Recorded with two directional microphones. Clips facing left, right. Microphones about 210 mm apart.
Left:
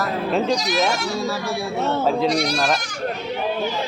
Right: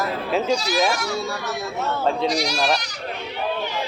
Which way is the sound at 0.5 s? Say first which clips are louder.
Even; 20° left (ahead or behind).